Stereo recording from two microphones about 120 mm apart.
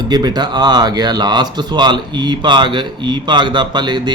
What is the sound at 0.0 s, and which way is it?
Speech, 35° right (ahead or behind).